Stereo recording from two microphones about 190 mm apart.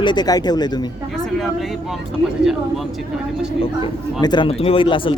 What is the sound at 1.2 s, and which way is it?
Speech, centre (ahead or behind).